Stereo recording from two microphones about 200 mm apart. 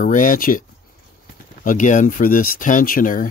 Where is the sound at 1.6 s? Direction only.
40° left (ahead or behind).